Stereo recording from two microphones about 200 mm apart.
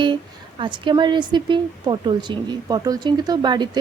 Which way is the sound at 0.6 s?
25° right (ahead or behind).